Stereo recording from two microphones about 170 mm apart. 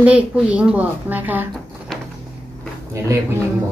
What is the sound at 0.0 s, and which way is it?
A woman's voice, 10° right (ahead or behind).